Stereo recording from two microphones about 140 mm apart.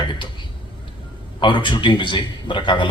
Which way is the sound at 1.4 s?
35° left (ahead or behind).